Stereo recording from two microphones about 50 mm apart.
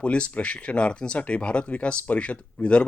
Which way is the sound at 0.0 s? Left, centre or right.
Left.